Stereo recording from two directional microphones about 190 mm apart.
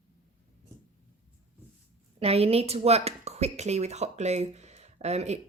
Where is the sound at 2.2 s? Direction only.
30° right (ahead or behind).